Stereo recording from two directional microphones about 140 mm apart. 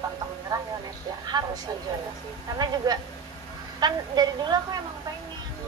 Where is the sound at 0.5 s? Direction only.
25° right (ahead or behind).